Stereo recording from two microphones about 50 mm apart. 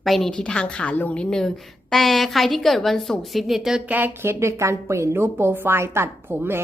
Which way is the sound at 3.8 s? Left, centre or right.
Right.